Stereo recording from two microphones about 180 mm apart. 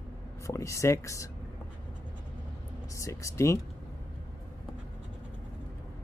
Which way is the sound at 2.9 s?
15° left (ahead or behind).